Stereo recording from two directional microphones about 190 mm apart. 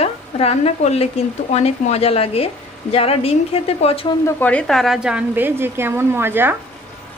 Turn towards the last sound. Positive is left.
turn(degrees=-10)  # may be behind; listen again after turning